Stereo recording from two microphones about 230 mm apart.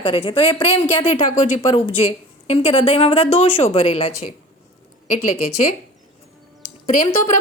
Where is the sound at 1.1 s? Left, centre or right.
Left.